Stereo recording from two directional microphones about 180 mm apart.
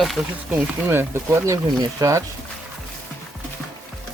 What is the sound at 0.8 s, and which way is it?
Speech, 15° right (ahead or behind).